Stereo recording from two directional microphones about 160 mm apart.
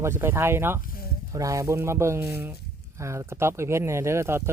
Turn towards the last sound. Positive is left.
turn(degrees=-15)  # may be behind; listen again after turning